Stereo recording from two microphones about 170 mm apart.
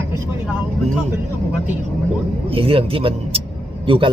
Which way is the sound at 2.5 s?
35° right (ahead or behind).